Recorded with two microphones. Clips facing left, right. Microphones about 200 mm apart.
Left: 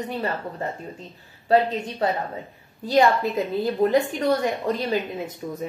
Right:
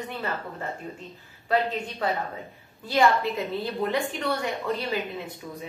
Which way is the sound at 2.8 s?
40° left (ahead or behind).